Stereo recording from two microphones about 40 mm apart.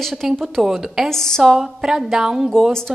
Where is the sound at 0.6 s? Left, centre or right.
Centre.